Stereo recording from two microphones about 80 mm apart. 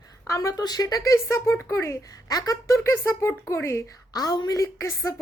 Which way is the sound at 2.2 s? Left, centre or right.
Left.